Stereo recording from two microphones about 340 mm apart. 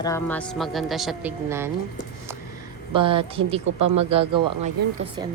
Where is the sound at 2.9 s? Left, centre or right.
Centre.